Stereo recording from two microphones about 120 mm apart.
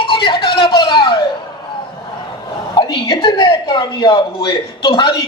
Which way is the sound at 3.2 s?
40° left (ahead or behind).